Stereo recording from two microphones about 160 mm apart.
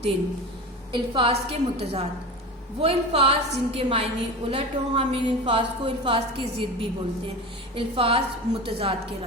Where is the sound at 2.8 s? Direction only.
40° right (ahead or behind).